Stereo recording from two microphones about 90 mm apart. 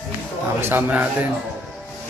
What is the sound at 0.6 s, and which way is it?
Speech, 25° right (ahead or behind).